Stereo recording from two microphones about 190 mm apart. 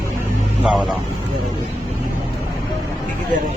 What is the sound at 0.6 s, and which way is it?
Speech, 5° right (ahead or behind).